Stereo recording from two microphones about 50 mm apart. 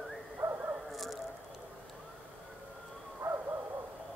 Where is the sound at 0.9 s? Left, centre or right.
Centre.